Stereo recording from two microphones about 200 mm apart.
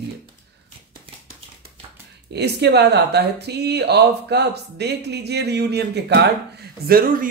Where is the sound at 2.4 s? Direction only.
55° right (ahead or behind).